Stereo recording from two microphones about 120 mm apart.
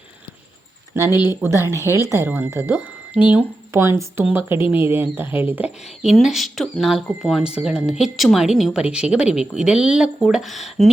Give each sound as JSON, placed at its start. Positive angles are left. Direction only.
{"t": 0.9, "sound": "a woman's voice", "side_deg": -20}